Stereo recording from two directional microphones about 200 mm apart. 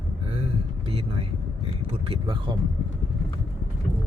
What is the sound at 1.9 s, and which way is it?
Speech, 30° right (ahead or behind).